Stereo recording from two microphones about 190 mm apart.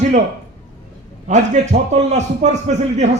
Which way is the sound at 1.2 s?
35° right (ahead or behind).